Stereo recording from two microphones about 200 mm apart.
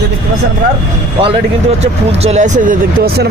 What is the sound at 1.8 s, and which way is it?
Speech, 35° right (ahead or behind).